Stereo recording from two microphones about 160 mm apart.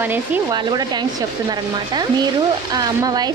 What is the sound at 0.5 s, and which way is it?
A woman's voice, 25° right (ahead or behind).